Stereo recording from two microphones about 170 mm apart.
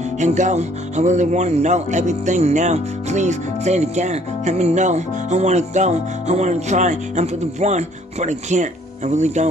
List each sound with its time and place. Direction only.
0.2 s speech: 45° right (ahead or behind)